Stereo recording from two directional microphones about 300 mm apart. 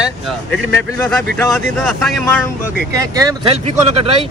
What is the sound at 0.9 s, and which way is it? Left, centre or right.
Speech, centre.